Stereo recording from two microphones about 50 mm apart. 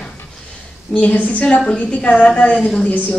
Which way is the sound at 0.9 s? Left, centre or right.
Left.